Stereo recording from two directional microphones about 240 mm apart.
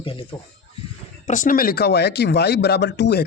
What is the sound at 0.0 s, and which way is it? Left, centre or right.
Speech, left.